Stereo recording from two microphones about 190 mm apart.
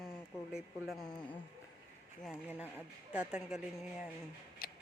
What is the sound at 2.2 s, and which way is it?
Speech, 5° right (ahead or behind).